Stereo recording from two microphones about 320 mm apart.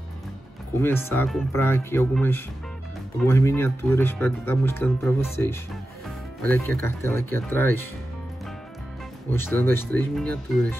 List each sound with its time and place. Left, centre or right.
0.7 s speech: centre
9.3 s speech: centre